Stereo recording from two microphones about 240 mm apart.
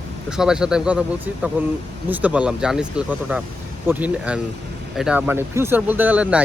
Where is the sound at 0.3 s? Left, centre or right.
Centre.